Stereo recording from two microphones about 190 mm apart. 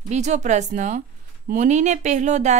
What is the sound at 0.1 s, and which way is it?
Speech, 40° right (ahead or behind).